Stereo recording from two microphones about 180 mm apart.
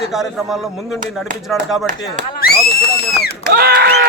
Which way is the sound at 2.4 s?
60° left (ahead or behind).